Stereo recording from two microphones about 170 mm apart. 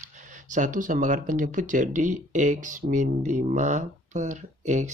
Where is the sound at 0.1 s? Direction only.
45° right (ahead or behind).